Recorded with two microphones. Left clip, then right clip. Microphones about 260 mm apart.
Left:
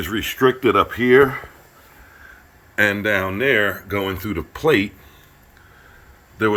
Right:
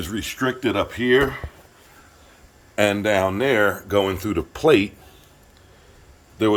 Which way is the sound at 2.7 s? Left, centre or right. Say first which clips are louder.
Left 1 dB; centre.